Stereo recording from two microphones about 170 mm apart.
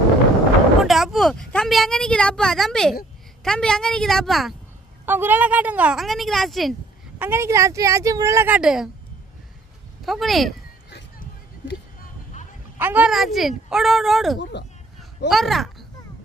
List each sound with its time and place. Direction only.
0.8 s speech: centre (ahead or behind)
5.0 s speech: 10° right (ahead or behind)
7.2 s speech: 15° right (ahead or behind)
10.1 s speech: centre (ahead or behind)
12.8 s speech: 10° right (ahead or behind)
14.3 s speech: 90° left
15.3 s speech: centre (ahead or behind)